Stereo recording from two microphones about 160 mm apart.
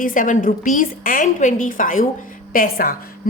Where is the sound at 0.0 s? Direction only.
55° left (ahead or behind).